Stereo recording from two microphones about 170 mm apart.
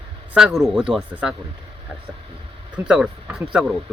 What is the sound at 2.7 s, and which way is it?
Speech, 5° right (ahead or behind).